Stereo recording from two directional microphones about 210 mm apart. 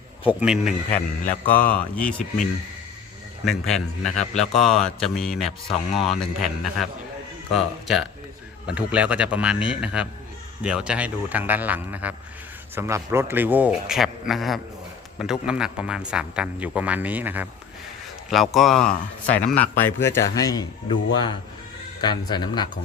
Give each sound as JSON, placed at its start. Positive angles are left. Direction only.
{"t": 0.3, "sound": "a man's voice", "side_deg": -5}
{"t": 3.4, "sound": "a man's voice", "side_deg": 0}